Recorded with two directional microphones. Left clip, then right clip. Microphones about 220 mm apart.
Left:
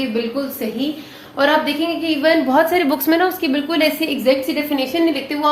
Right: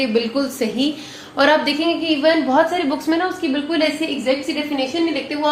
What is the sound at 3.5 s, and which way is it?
A woman's voice, 55° left (ahead or behind).